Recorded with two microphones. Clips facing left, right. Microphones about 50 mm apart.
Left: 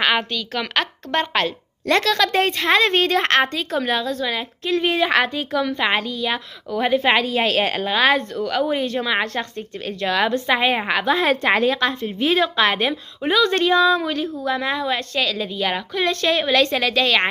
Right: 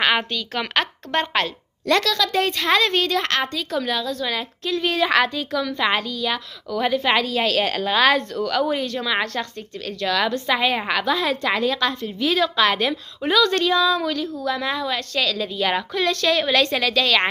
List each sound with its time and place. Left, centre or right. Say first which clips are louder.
0.0 s a woman's voice: even; centre
1.9 s a woman's voice: left 1 dB; left
2.1 s a woman's voice: left 3 dB; left
2.5 s a woman's voice: left 2 dB; centre
4.2 s a woman's voice: left 1 dB; centre
11.1 s a woman's voice: left 4 dB; left
11.6 s a woman's voice: left 2 dB; centre
16.0 s a woman's voice: left 1 dB; centre
16.4 s a woman's voice: left 1 dB; centre